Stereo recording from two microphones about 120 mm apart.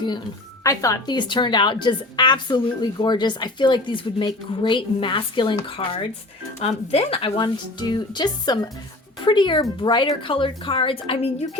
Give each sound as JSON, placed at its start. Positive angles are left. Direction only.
{"t": 0.6, "sound": "a woman's voice", "side_deg": 25}
{"t": 6.6, "sound": "a woman's voice", "side_deg": 60}